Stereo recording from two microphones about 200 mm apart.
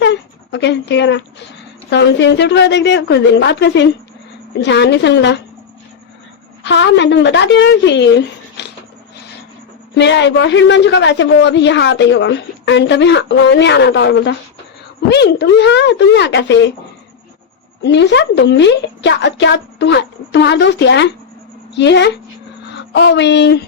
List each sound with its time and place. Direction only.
0.0 s a man's voice: 60° left (ahead or behind)
6.6 s a man's voice: 60° left (ahead or behind)
9.9 s a man's voice: 60° left (ahead or behind)
17.8 s a man's voice: 60° left (ahead or behind)